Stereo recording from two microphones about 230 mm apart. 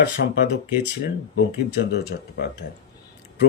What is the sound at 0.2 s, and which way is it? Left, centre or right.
Speech, left.